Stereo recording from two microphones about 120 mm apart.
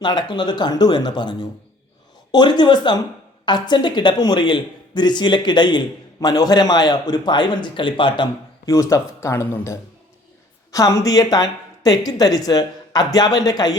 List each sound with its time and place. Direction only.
0.0 s a man's voice: 40° left (ahead or behind)
8.6 s a man's voice: 25° left (ahead or behind)